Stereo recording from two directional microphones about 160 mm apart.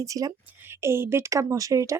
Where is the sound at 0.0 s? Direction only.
20° right (ahead or behind).